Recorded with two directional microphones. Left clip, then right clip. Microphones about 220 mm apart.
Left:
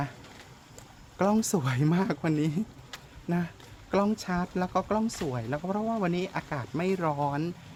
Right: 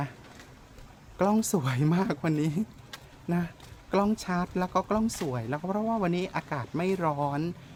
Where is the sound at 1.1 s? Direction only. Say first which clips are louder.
Even; 5° right (ahead or behind).